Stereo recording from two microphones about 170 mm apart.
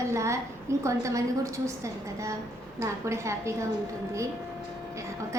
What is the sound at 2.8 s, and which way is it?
Speech, 15° right (ahead or behind).